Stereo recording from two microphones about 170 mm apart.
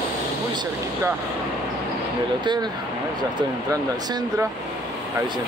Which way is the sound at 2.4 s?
25° right (ahead or behind).